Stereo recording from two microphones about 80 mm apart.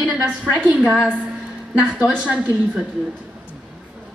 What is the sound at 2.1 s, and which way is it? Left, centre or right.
Speech, centre.